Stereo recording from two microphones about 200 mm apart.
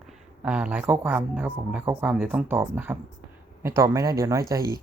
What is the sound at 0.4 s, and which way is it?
Speech, 5° right (ahead or behind).